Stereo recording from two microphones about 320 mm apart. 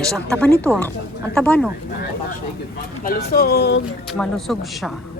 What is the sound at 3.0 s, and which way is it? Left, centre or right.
Speech, left.